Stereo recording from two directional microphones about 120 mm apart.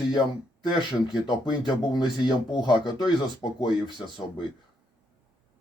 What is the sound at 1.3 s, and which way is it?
Speech, 40° left (ahead or behind).